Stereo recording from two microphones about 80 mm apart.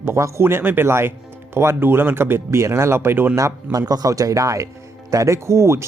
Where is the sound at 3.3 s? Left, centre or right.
Right.